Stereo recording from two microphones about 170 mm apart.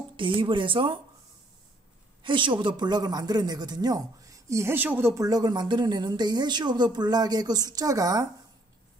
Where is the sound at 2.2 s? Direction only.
30° right (ahead or behind).